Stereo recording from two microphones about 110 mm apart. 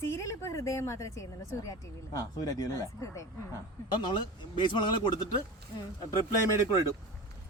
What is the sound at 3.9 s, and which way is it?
Speech, 45° left (ahead or behind).